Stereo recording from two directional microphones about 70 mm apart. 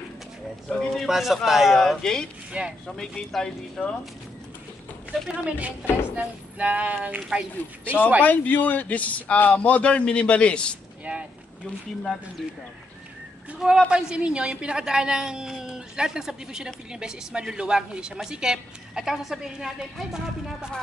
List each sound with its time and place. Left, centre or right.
0.7 s speech: centre
2.5 s a woman's voice: centre
3.0 s speech: centre
5.3 s a woman's voice: centre
8.2 s a man's voice: left
11.1 s speech: centre
13.6 s a woman's voice: centre